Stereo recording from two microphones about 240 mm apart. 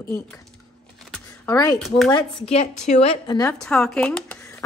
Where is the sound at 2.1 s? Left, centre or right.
Left.